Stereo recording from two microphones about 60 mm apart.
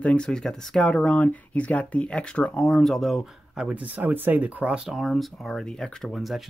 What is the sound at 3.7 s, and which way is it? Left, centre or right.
Speech, right.